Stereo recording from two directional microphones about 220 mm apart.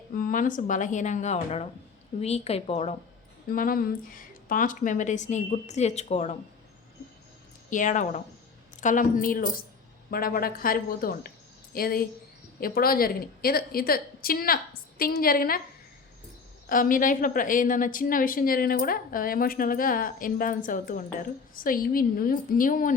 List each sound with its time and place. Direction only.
0.1 s a woman's voice: 40° left (ahead or behind)
3.5 s a woman's voice: 40° left (ahead or behind)
7.7 s a woman's voice: 35° left (ahead or behind)
16.6 s a woman's voice: 40° left (ahead or behind)